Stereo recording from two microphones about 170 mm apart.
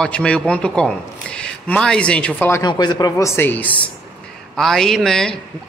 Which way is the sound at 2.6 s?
25° left (ahead or behind).